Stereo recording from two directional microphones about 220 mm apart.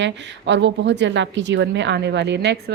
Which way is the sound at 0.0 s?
55° right (ahead or behind).